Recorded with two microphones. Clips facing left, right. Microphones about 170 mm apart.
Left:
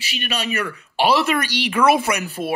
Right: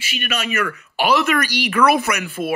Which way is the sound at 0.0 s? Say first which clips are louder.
Right 1 dB; 35° left (ahead or behind).